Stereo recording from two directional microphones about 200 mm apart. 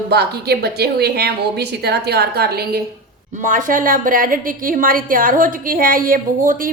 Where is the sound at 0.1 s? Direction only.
55° right (ahead or behind).